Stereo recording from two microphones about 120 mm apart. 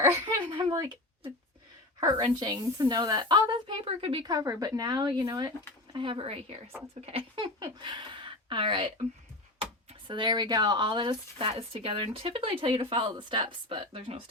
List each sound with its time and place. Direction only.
0.0 s speech: 20° right (ahead or behind)
0.3 s a sound: 45° right (ahead or behind)
0.7 s speech: 35° right (ahead or behind)
2.4 s speech: 35° right (ahead or behind)
3.8 s speech: 50° right (ahead or behind)
4.3 s speech: 30° right (ahead or behind)
6.1 s speech: 50° right (ahead or behind)
10.1 s speech: 40° right (ahead or behind)